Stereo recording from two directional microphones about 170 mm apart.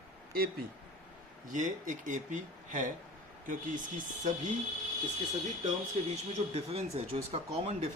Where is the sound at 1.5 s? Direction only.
50° right (ahead or behind).